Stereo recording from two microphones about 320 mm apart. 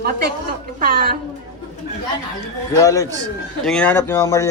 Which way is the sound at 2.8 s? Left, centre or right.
Centre.